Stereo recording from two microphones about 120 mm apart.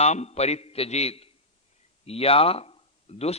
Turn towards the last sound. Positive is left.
turn(degrees=60)  # may be behind; listen again after turning